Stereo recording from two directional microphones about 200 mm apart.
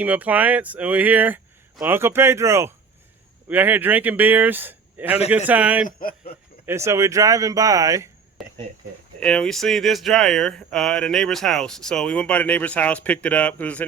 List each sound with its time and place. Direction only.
0.0 s speech: 10° right (ahead or behind)
5.8 s speech: 45° left (ahead or behind)
6.7 s speech: 15° right (ahead or behind)
8.4 s a sound: centre (ahead or behind)
9.2 s speech: 5° left (ahead or behind)